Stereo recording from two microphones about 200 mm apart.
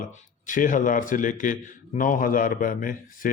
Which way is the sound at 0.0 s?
40° left (ahead or behind).